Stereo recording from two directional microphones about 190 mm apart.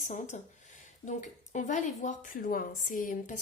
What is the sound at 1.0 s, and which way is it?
A woman's voice, 40° left (ahead or behind).